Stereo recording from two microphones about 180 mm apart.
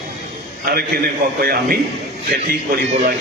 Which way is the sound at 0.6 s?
55° right (ahead or behind).